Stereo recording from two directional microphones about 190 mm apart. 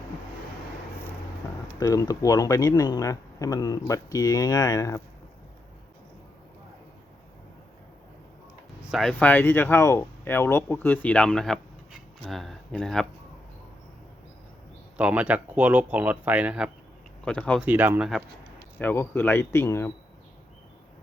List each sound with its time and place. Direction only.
1.8 s speech: 15° left (ahead or behind)
8.9 s speech: centre (ahead or behind)
14.9 s speech: 5° right (ahead or behind)
17.2 s speech: 5° left (ahead or behind)
17.6 s speech: 10° right (ahead or behind)
18.8 s speech: 10° left (ahead or behind)